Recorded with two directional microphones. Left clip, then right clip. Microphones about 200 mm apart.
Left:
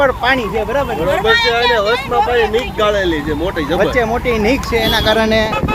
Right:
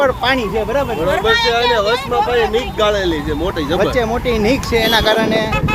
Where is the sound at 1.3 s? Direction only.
55° right (ahead or behind).